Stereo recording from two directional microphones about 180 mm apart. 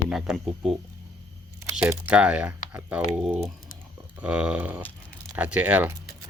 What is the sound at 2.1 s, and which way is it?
Speech, 5° right (ahead or behind).